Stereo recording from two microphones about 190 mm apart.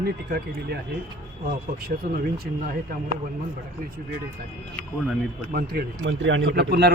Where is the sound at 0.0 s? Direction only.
55° right (ahead or behind).